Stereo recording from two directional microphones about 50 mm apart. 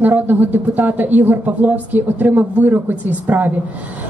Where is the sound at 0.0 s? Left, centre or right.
Right.